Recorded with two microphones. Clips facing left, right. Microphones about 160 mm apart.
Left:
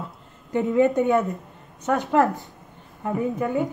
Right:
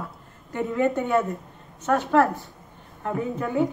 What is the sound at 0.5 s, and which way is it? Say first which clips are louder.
A woman's voice: left 4 dB; 20° left (ahead or behind).